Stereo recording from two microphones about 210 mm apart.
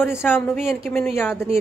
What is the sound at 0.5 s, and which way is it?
Speech, centre (ahead or behind).